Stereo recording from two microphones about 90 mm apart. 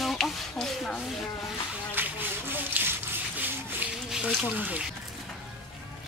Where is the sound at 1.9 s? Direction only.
20° right (ahead or behind).